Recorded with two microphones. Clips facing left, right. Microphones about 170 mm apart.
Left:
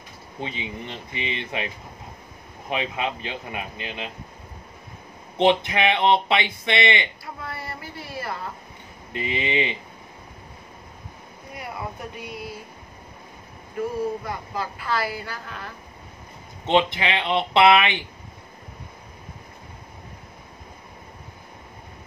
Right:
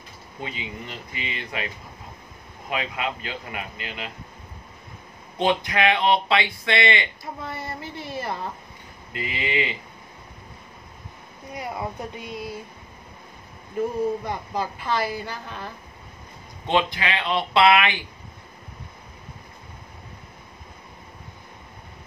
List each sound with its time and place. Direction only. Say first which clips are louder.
0.4 s speech: left 2 dB; 25° left (ahead or behind)
2.7 s speech: left 1 dB; 25° left (ahead or behind)
5.4 s speech: left 2 dB; 25° left (ahead or behind)
7.4 s a woman's voice: right 1 dB; 20° right (ahead or behind)
9.1 s speech: left 2 dB; 25° left (ahead or behind)
11.5 s a woman's voice: right 3 dB; 20° right (ahead or behind)
14.2 s a woman's voice: right 2 dB; 20° right (ahead or behind)
16.6 s speech: left 2 dB; 20° left (ahead or behind)